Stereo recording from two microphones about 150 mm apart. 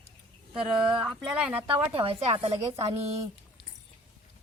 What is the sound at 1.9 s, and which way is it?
Speech, 40° right (ahead or behind).